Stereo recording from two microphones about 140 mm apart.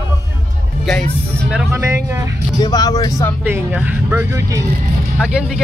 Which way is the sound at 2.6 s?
30° left (ahead or behind).